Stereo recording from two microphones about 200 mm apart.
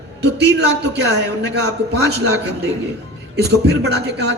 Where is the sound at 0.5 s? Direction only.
55° right (ahead or behind).